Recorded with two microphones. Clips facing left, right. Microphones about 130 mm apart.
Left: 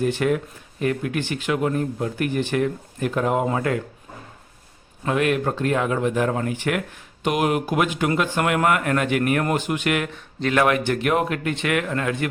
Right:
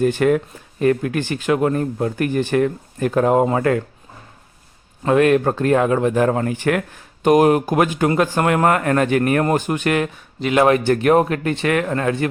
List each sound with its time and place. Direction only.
0.0 s speech: 50° right (ahead or behind)
5.0 s a man's voice: 40° right (ahead or behind)